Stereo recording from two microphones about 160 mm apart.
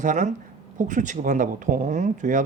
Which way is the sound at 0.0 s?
50° right (ahead or behind).